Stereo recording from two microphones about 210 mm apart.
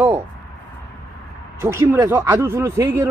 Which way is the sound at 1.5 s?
15° right (ahead or behind).